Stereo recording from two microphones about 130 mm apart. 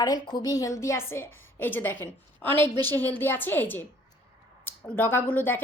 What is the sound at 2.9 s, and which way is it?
Speech, 15° left (ahead or behind).